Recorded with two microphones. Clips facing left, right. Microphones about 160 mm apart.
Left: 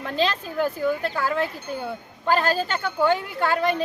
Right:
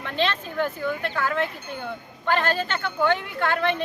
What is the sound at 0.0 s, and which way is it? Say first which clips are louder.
A woman's voice: left 2 dB; 35° left (ahead or behind).